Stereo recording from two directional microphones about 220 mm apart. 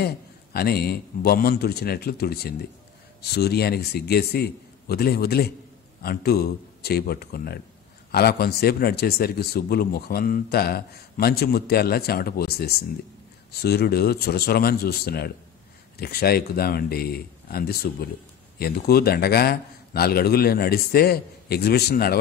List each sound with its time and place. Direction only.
0.0 s speech: 45° left (ahead or behind)